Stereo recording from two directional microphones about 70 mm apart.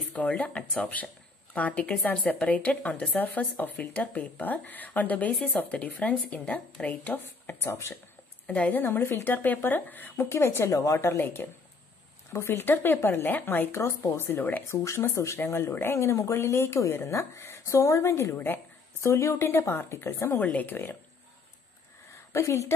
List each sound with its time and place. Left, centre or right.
0.1 s speech: left
8.5 s speech: centre; by 10.7 s left
10.7 s speech: left
13.7 s speech: left
14.7 s speech: left
22.3 s speech: left